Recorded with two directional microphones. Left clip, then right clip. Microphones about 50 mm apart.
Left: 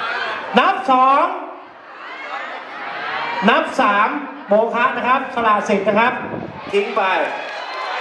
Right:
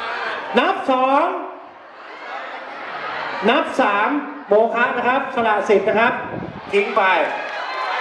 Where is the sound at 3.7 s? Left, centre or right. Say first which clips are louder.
Left 2 dB; left.